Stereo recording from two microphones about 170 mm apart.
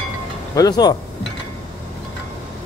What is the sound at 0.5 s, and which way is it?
Speech, 25° left (ahead or behind).